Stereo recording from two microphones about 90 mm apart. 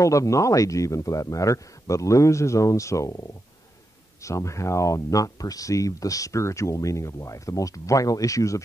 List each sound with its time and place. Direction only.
0.0 s speech: 35° left (ahead or behind)